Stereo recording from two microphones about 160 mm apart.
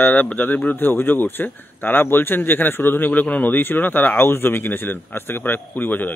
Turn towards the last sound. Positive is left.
turn(degrees=10)  # may be behind; listen again after turning